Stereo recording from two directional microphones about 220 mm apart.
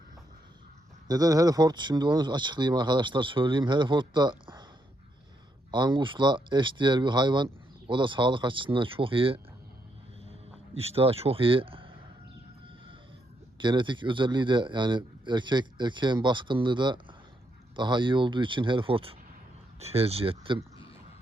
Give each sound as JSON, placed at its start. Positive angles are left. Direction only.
{"t": 1.0, "sound": "speech", "side_deg": -15}
{"t": 5.7, "sound": "speech", "side_deg": -20}
{"t": 10.8, "sound": "speech", "side_deg": -25}
{"t": 13.6, "sound": "speech", "side_deg": -20}